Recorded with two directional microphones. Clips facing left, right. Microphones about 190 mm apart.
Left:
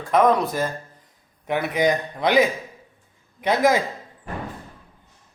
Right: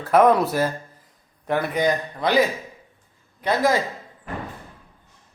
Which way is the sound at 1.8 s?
15° left (ahead or behind).